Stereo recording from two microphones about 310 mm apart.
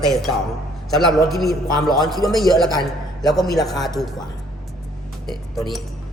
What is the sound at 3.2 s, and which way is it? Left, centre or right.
Speech, centre.